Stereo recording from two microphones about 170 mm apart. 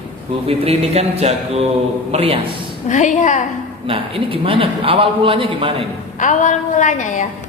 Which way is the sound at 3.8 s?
30° right (ahead or behind).